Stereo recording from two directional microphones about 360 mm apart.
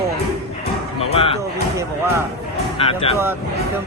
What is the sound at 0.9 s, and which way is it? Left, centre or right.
Music, centre.